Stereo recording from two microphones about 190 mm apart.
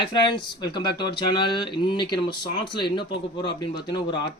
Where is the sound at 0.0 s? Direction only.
25° left (ahead or behind).